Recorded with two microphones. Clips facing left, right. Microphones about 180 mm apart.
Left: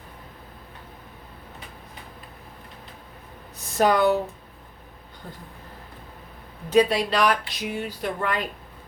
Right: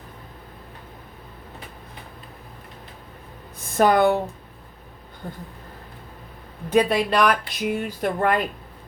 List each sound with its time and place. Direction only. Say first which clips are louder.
3.7 s speech: right 2 dB; 50° right (ahead or behind)
6.7 s speech: even; 55° right (ahead or behind)